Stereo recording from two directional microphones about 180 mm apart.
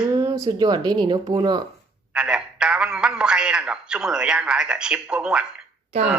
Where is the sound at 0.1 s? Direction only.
20° right (ahead or behind).